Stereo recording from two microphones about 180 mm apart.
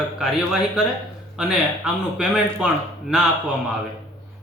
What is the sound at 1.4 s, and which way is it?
A man's voice, 5° right (ahead or behind).